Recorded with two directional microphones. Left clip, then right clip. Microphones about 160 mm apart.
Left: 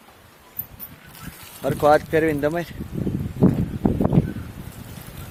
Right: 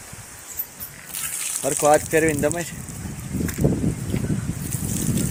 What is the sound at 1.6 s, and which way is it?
Speech, centre (ahead or behind).